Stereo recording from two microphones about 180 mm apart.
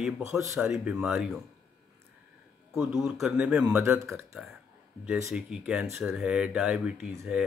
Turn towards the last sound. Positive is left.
turn(degrees=-5)  # may be behind; listen again after turning